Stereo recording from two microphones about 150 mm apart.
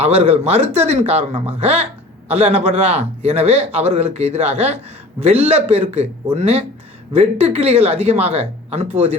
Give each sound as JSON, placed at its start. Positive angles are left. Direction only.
{"t": 0.0, "sound": "a man's voice", "side_deg": -45}